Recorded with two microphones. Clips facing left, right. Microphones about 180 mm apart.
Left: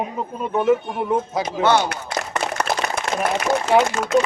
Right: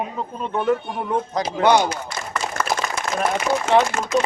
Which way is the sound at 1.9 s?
60° left (ahead or behind).